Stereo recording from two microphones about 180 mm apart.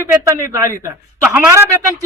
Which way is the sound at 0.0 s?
15° right (ahead or behind).